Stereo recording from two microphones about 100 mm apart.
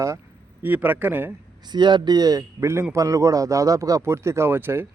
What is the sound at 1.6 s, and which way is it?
Speech, 45° right (ahead or behind).